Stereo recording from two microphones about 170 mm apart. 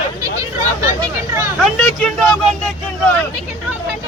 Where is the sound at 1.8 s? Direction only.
5° left (ahead or behind).